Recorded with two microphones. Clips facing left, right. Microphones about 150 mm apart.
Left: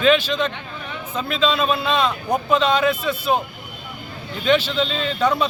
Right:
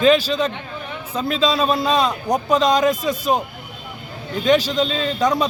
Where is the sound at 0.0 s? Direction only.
35° right (ahead or behind).